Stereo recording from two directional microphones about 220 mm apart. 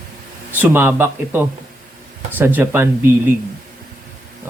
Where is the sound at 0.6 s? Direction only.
10° right (ahead or behind).